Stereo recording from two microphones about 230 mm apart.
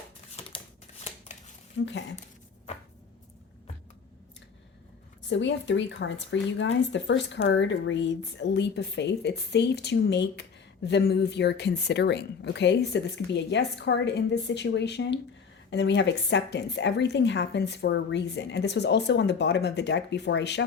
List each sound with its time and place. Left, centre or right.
0.5 s shuffling cards: left
1.8 s speech: left
5.3 s speech: left